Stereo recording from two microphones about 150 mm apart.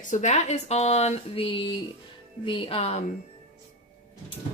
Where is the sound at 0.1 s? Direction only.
50° left (ahead or behind).